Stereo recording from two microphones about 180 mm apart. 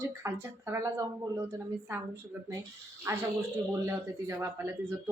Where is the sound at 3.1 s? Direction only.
20° right (ahead or behind).